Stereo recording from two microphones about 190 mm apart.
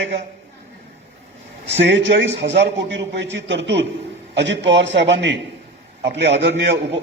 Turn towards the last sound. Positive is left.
turn(degrees=-65)  # may be behind; listen again after turning